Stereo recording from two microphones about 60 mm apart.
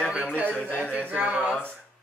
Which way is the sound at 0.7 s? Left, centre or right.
Centre.